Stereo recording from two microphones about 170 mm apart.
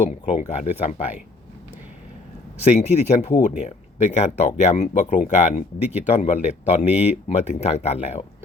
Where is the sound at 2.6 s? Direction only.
40° left (ahead or behind).